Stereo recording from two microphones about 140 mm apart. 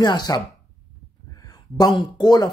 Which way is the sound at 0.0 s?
30° left (ahead or behind).